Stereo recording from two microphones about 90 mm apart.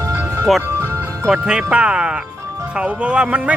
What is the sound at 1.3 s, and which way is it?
Speech, 10° right (ahead or behind).